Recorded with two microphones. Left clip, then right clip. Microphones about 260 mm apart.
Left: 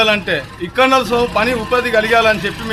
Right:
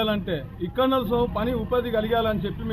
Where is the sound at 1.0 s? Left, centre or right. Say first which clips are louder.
Left 8 dB; left.